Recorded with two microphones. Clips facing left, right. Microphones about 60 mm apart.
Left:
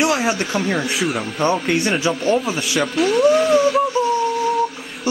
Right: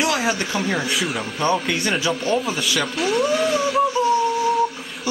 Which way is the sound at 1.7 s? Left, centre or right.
Centre.